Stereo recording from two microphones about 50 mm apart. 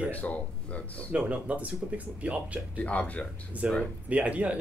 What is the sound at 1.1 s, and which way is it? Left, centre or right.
Speech, right.